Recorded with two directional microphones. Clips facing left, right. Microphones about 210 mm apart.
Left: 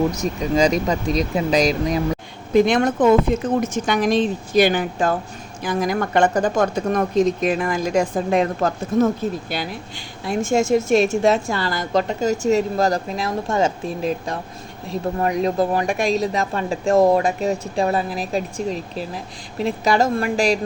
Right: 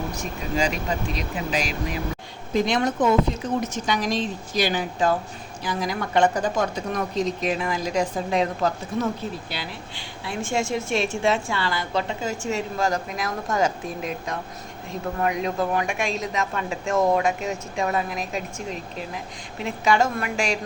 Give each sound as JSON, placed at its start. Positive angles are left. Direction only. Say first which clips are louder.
{"t": 0.7, "sound": "a woman's voice", "louder": "left 7 dB", "side_deg": 40}
{"t": 2.5, "sound": "a woman's voice", "louder": "left 6 dB", "side_deg": 55}